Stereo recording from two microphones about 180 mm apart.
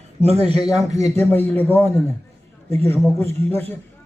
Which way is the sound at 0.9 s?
15° left (ahead or behind).